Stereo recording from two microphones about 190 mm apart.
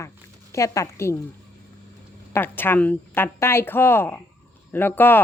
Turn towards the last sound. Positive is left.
turn(degrees=10)  # may be behind; listen again after turning